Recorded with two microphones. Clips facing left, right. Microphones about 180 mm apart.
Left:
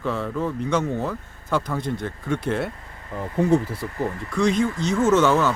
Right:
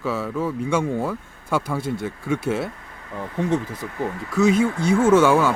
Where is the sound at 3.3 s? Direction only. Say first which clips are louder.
Left 3 dB; 10° left (ahead or behind).